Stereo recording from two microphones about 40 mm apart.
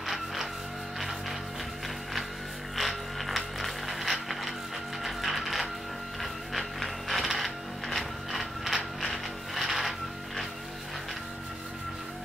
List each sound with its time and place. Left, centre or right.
0.0 s music: centre
2.7 s mechanisms: centre
5.0 s music: centre